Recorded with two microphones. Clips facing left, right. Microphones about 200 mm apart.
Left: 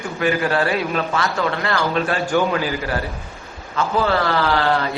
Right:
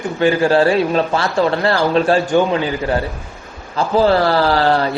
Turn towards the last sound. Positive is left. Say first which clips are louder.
# right 4 dB
turn(degrees=-35)  # may be behind; listen again after turning